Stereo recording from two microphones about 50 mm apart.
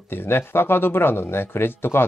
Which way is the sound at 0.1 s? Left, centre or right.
Left.